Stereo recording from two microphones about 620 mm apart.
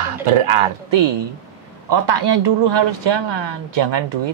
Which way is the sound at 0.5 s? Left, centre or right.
Right.